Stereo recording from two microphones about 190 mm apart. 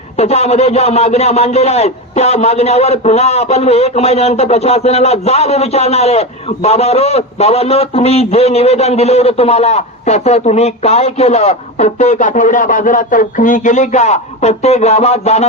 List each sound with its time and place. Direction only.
0.2 s a man's voice: 35° left (ahead or behind)